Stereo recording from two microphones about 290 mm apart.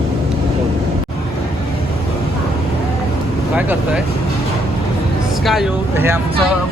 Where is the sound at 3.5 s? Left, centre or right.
Centre.